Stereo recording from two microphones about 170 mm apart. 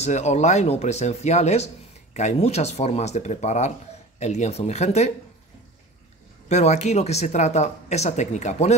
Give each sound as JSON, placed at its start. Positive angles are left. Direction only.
{"t": 0.0, "sound": "speech", "side_deg": 40}
{"t": 6.5, "sound": "speech", "side_deg": 40}